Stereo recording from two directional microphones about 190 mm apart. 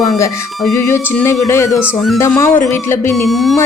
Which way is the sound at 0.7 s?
15° left (ahead or behind).